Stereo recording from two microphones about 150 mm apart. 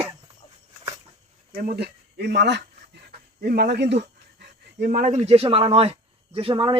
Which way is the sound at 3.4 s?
90° right.